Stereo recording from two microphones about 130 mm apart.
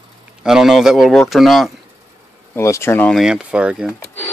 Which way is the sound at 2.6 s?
20° left (ahead or behind).